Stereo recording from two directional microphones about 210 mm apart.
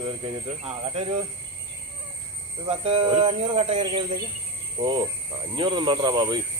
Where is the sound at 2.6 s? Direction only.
25° right (ahead or behind).